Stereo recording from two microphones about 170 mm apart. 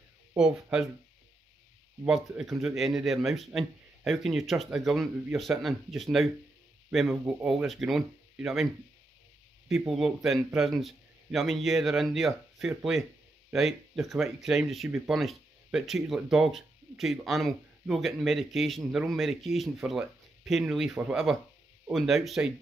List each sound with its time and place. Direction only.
0.4 s speech: 5° right (ahead or behind)
2.0 s speech: 5° right (ahead or behind)
9.7 s speech: centre (ahead or behind)